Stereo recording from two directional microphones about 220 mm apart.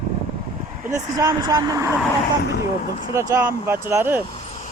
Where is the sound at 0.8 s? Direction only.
15° right (ahead or behind).